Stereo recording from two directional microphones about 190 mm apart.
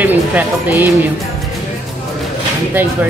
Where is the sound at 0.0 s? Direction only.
10° right (ahead or behind).